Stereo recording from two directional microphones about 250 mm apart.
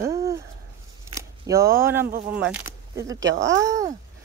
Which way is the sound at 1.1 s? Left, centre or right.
Centre.